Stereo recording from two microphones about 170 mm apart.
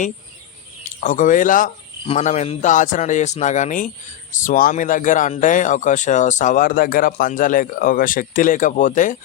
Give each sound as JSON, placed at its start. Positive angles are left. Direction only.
{"t": 1.0, "sound": "a man's voice", "side_deg": 50}
{"t": 2.0, "sound": "a man's voice", "side_deg": 40}